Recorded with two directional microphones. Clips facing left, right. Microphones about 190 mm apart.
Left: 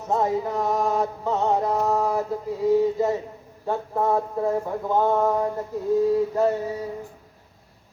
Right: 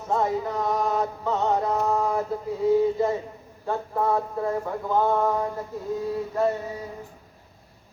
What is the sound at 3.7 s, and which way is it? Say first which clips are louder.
Speech: left 2 dB; 10° left (ahead or behind).